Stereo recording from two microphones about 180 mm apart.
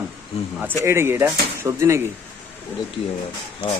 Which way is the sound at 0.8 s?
15° right (ahead or behind).